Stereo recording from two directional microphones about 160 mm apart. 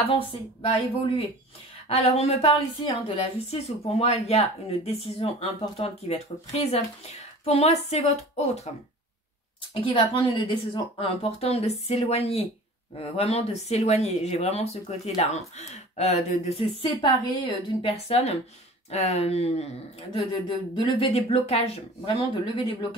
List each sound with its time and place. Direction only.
0.2 s speech: 35° left (ahead or behind)
9.8 s speech: 35° left (ahead or behind)